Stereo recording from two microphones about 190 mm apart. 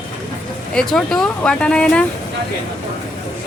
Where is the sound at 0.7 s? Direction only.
5° left (ahead or behind).